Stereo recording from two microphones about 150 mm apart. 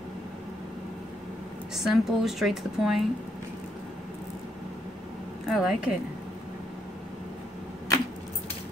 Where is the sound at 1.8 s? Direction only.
Centre (ahead or behind).